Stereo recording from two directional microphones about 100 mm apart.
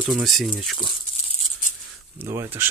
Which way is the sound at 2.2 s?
25° right (ahead or behind).